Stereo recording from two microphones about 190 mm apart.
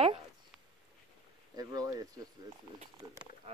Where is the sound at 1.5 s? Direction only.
20° right (ahead or behind).